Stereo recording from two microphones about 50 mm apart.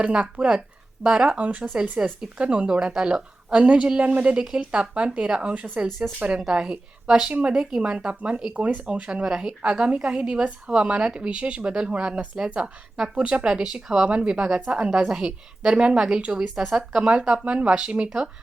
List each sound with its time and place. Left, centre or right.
0.0 s a woman's voice: right
1.7 s a woman's voice: centre
2.4 s a woman's voice: right
4.4 s a woman's voice: centre
6.7 s speech: centre
7.3 s a woman's voice: right
7.5 s a woman's voice: centre
9.2 s a woman's voice: centre
9.6 s a woman's voice: right